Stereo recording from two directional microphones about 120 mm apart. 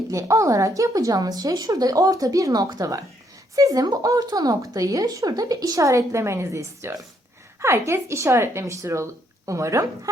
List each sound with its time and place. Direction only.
0.1 s speech: 25° right (ahead or behind)